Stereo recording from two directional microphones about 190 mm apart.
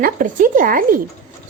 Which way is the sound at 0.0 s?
45° right (ahead or behind).